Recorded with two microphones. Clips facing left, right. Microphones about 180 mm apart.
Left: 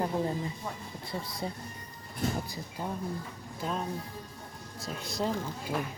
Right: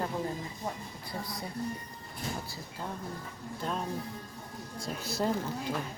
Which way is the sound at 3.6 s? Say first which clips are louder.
Left 1 dB; centre (ahead or behind).